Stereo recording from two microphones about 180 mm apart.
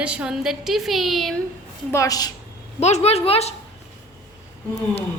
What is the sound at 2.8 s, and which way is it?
Speech, 35° left (ahead or behind).